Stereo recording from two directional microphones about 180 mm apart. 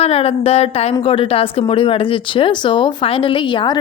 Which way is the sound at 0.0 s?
35° left (ahead or behind).